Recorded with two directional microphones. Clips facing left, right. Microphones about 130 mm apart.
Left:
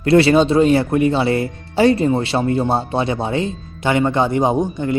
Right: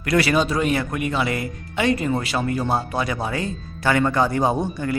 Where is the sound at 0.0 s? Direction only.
30° left (ahead or behind).